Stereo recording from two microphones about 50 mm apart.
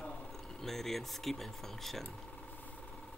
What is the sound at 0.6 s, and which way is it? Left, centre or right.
Speech, centre.